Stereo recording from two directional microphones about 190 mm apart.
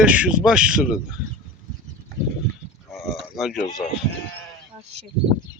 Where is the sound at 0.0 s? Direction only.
5° right (ahead or behind).